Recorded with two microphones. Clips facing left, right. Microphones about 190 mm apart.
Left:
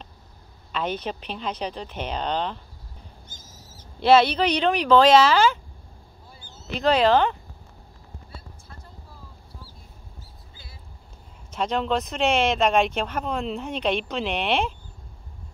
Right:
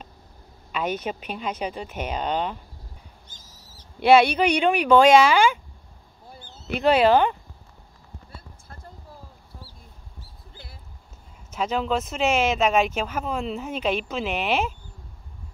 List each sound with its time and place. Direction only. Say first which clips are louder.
0.7 s speech: right 1 dB; 10° right (ahead or behind)
3.4 s owl: left 3 dB; 35° right (ahead or behind)
4.0 s speech: right 1 dB; 10° right (ahead or behind)
6.7 s speech: right 1 dB; 10° right (ahead or behind)
11.5 s speech: even; 5° right (ahead or behind)